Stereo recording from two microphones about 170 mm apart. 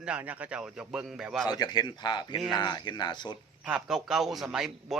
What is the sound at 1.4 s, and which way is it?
A man's voice, 25° left (ahead or behind).